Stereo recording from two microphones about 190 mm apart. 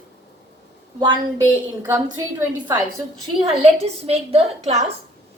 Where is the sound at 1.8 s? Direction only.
10° right (ahead or behind).